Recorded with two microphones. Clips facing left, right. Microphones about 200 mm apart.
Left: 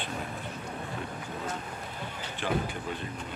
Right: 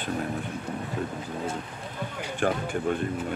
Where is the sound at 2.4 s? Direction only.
45° right (ahead or behind).